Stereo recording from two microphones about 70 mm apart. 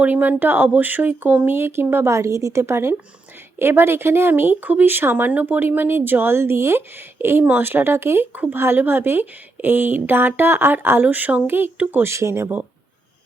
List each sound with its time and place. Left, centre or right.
0.0 s speech: right
12.1 s speech: right